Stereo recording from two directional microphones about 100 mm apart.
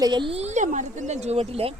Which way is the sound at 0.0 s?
45° right (ahead or behind).